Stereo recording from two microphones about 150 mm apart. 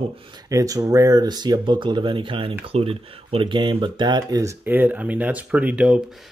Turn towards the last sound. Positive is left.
turn(degrees=-5)  # may be behind; listen again after turning